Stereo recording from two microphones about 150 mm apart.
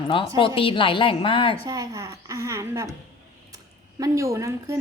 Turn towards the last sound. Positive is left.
turn(degrees=-20)  # may be behind; listen again after turning